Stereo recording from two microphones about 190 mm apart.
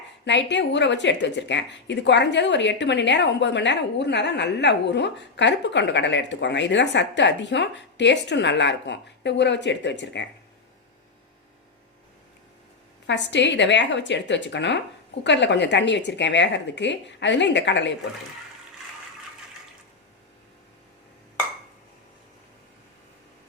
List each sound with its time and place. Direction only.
0.3 s speech: 70° left (ahead or behind)
13.1 s speech: 70° left (ahead or behind)